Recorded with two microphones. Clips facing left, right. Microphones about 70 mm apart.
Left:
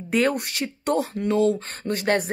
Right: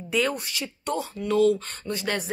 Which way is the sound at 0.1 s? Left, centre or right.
Left.